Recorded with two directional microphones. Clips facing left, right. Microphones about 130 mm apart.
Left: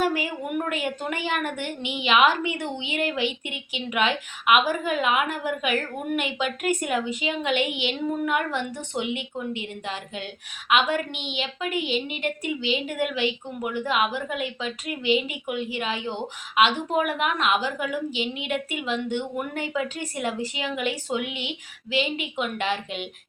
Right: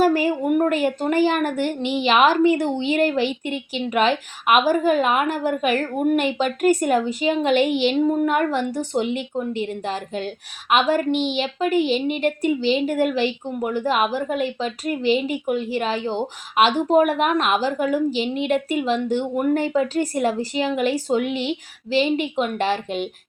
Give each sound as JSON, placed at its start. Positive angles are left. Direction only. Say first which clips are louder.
{"t": 0.0, "sound": "a woman's voice", "louder": "right 7 dB", "side_deg": -35}